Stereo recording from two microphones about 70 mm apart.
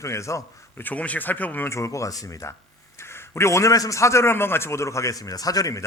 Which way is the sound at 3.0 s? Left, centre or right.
Left.